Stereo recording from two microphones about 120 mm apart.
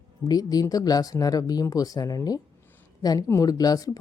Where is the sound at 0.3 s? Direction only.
30° left (ahead or behind).